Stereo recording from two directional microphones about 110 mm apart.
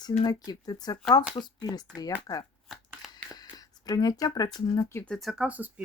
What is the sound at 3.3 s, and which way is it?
Speech, 35° left (ahead or behind).